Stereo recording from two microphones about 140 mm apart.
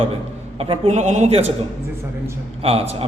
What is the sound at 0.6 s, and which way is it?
Speech, 50° right (ahead or behind).